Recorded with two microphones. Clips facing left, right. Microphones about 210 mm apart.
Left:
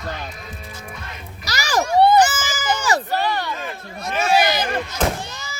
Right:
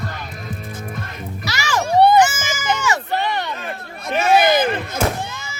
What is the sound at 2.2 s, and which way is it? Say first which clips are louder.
Goat: right 1 dB; 35° left (ahead or behind).